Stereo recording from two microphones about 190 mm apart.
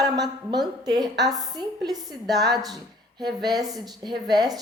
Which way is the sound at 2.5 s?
Centre (ahead or behind).